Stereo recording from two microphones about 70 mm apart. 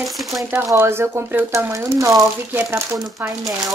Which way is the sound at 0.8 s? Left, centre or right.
Right.